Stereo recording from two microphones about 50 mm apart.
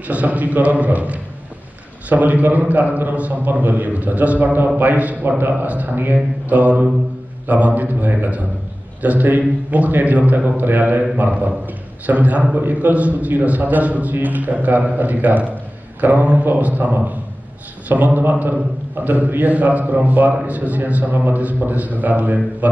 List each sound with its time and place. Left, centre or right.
0.1 s a man's voice: right